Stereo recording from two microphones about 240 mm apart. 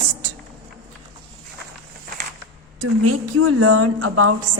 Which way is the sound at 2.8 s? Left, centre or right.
Right.